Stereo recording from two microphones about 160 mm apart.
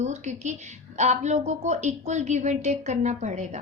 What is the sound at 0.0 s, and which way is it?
A woman's voice, 45° right (ahead or behind).